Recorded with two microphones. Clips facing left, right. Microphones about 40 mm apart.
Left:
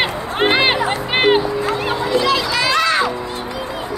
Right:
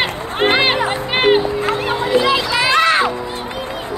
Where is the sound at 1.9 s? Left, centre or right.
Right.